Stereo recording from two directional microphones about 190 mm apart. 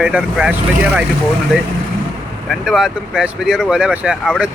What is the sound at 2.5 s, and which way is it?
Speech, centre (ahead or behind).